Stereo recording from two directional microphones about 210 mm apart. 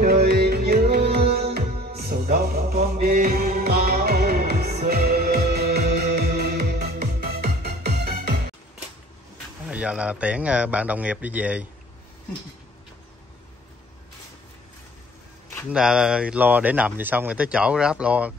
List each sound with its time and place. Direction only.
0.0 s music: 50° right (ahead or behind)
9.7 s speech: 5° right (ahead or behind)
15.7 s speech: 5° right (ahead or behind)